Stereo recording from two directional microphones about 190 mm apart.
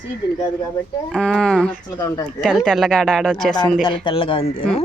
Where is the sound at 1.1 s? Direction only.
5° left (ahead or behind).